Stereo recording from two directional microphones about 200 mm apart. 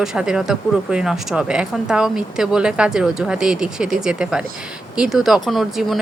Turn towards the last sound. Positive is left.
turn(degrees=0)  # may be behind; listen again after turning